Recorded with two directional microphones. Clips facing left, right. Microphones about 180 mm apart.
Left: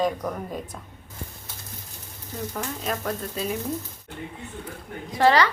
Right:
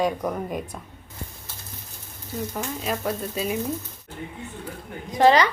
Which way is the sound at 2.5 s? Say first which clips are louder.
Even; 10° right (ahead or behind).